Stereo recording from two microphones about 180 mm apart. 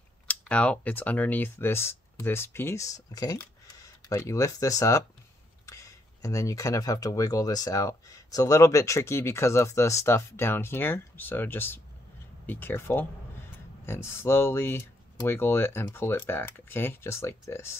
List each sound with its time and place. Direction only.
0.3 s speech: 5° left (ahead or behind)